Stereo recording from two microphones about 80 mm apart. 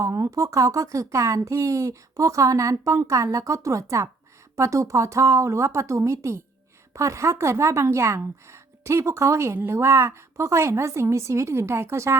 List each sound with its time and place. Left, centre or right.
0.0 s speech: right